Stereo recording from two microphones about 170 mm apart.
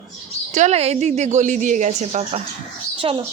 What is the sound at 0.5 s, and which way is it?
A woman's voice, 40° right (ahead or behind).